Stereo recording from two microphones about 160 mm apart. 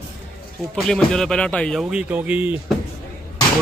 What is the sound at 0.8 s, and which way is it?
Speech, 5° left (ahead or behind).